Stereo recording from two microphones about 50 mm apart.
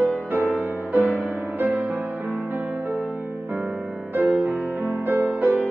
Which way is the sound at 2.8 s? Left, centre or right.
Right.